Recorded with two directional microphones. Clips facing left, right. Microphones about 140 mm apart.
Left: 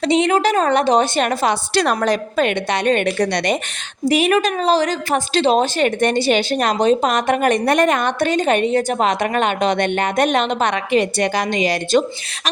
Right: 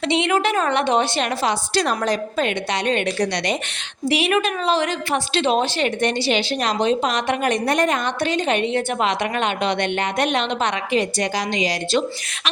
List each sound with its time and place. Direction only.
0.0 s a woman's voice: 40° left (ahead or behind)
4.1 s a woman's voice: 40° left (ahead or behind)